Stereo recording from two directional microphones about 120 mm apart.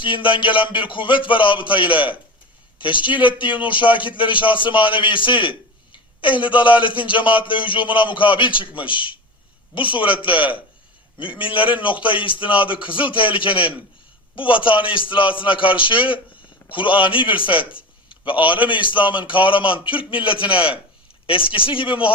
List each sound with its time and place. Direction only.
0.0 s a man's voice: 45° left (ahead or behind)